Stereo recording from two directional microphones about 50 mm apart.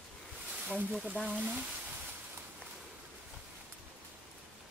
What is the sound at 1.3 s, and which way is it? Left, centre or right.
Speech, right.